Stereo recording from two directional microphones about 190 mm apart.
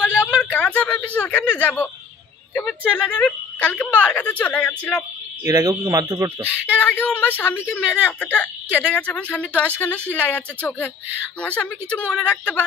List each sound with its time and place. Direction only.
0.0 s a sound: 10° left (ahead or behind)
1.1 s a woman's voice: 10° left (ahead or behind)
3.1 s a woman's voice: 5° left (ahead or behind)
5.4 s speech: 20° right (ahead or behind)
6.4 s a woman's voice: 10° left (ahead or behind)